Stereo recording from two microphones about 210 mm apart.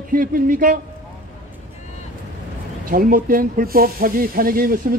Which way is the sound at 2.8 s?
40° right (ahead or behind).